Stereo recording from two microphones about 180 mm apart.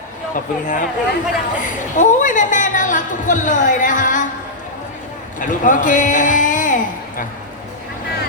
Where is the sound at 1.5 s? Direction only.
45° left (ahead or behind).